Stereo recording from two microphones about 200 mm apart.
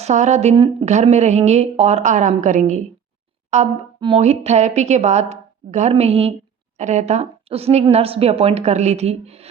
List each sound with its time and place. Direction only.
0.0 s a woman's voice: 35° right (ahead or behind)